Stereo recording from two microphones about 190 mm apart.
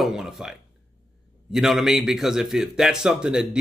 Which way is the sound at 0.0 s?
Centre (ahead or behind).